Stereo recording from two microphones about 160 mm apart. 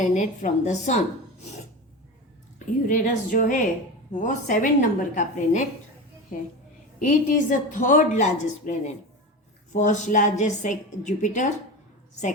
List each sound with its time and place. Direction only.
0.0 s a woman's voice: 50° left (ahead or behind)
2.6 s a woman's voice: 55° left (ahead or behind)
7.0 s a woman's voice: 50° left (ahead or behind)